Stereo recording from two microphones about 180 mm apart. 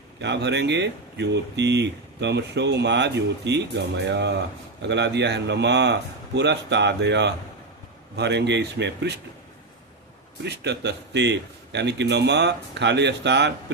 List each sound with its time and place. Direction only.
0.2 s speech: 75° right (ahead or behind)
10.4 s speech: 70° right (ahead or behind)